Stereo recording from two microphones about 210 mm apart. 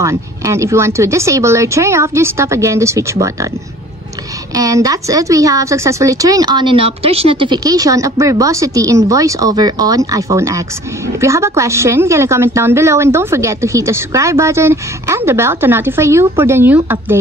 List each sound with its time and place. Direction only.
0.0 s a woman's voice: 15° right (ahead or behind)
4.6 s a woman's voice: 15° right (ahead or behind)